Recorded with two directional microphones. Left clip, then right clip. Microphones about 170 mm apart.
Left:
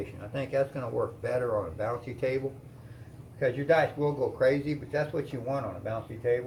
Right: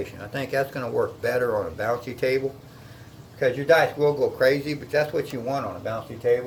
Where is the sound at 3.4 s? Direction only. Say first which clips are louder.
Right 6 dB; 25° right (ahead or behind).